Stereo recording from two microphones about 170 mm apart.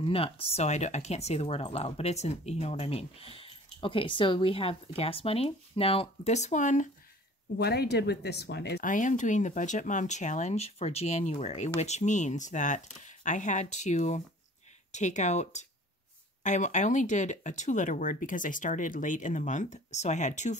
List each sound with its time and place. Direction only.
0.0 s speech: 35° left (ahead or behind)
7.5 s speech: 70° left (ahead or behind)
8.8 s speech: 50° left (ahead or behind)